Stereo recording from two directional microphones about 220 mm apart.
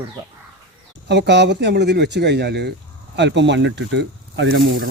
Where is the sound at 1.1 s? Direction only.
50° right (ahead or behind).